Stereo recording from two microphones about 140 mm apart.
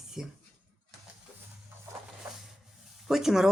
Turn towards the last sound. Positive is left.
turn(degrees=-5)  # may be behind; listen again after turning